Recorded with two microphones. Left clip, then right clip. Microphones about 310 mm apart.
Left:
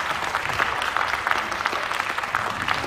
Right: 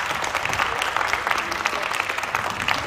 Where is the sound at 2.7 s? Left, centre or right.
Right.